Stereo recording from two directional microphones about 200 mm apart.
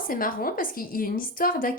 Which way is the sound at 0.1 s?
45° left (ahead or behind).